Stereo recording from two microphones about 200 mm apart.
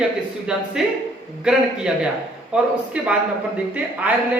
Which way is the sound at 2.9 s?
5° right (ahead or behind).